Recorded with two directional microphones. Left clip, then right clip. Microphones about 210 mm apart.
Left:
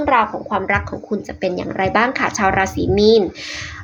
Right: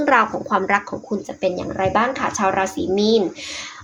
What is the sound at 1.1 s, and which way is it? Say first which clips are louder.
Speech: even; 15° left (ahead or behind).